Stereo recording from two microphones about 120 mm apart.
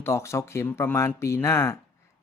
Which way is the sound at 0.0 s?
25° left (ahead or behind).